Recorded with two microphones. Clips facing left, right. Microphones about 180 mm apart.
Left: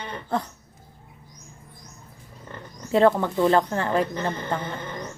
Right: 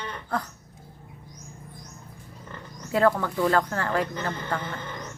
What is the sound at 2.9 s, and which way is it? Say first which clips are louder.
Speech: left 4 dB; 25° left (ahead or behind).